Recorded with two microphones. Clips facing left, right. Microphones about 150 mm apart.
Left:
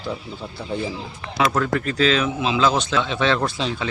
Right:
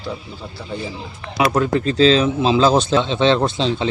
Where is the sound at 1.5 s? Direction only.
25° right (ahead or behind).